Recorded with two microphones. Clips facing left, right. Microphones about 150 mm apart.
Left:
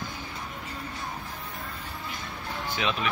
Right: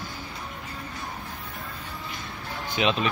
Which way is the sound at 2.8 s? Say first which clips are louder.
Right 5 dB; 20° right (ahead or behind).